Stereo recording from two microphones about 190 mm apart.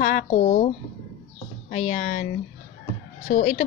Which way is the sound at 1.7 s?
40° left (ahead or behind).